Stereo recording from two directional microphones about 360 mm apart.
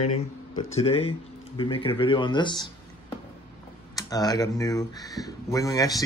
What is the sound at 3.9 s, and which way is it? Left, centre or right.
Speech, centre.